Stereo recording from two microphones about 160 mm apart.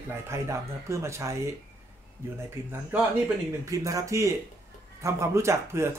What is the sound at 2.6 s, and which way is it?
Speech, 15° right (ahead or behind).